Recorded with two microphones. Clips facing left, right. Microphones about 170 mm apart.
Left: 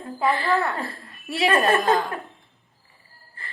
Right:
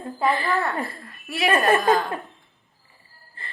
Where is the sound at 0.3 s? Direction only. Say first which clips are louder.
Left 1 dB; 20° right (ahead or behind).